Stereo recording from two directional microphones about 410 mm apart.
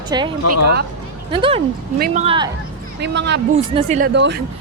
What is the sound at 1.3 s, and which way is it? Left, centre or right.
A woman's voice, centre.